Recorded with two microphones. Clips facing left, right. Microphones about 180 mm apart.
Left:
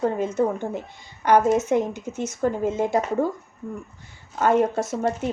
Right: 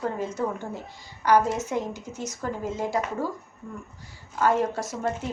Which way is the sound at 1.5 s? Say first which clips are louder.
Left 8 dB; 20° left (ahead or behind).